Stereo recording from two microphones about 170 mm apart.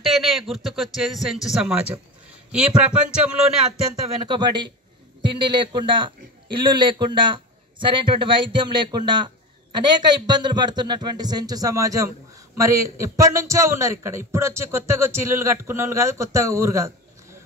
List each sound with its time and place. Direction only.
0.0 s a sound: centre (ahead or behind)
0.7 s speech: centre (ahead or behind)
4.3 s a man's voice: 25° right (ahead or behind)